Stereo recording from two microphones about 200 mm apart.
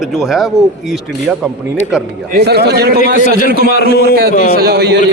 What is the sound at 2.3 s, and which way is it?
A man's voice, 50° right (ahead or behind).